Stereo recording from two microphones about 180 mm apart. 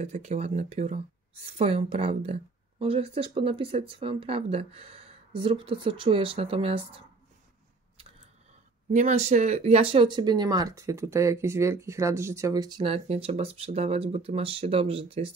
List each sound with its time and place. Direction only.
0.0 s speech: 40° right (ahead or behind)
8.9 s speech: 40° right (ahead or behind)